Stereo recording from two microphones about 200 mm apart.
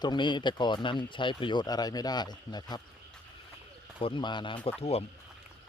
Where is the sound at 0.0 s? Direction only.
20° left (ahead or behind).